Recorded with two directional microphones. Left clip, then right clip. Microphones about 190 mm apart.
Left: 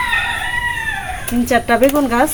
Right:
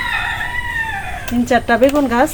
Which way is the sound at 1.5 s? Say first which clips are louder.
Even; 5° left (ahead or behind).